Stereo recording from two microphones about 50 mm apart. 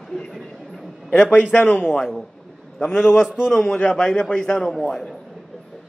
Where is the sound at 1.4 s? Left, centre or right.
Centre.